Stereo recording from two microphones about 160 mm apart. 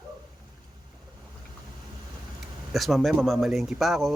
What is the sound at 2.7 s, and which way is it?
Speech, centre (ahead or behind).